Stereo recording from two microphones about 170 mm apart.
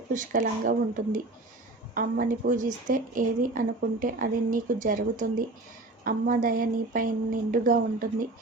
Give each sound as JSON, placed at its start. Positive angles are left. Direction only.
{"t": 0.1, "sound": "speech", "side_deg": -50}